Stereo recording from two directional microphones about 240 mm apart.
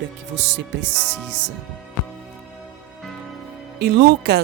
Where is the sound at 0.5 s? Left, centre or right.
Right.